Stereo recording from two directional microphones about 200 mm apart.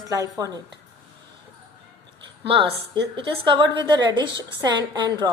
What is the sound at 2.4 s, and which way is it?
A woman's voice, 25° right (ahead or behind).